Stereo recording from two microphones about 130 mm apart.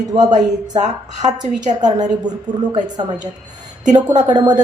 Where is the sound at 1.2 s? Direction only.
65° right (ahead or behind).